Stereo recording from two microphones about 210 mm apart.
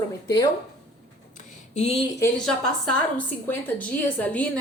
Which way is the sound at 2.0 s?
15° left (ahead or behind).